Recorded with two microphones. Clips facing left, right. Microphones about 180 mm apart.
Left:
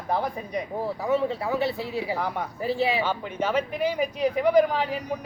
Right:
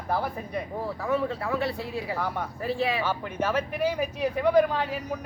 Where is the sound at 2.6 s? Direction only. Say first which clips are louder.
Left 3 dB; 25° left (ahead or behind).